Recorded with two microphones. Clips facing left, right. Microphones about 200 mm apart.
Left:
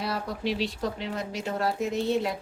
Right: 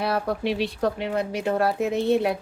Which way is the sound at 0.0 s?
60° right (ahead or behind).